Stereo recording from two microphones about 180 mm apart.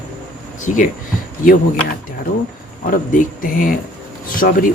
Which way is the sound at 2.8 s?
50° left (ahead or behind).